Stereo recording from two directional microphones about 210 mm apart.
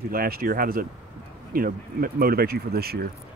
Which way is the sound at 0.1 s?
45° right (ahead or behind).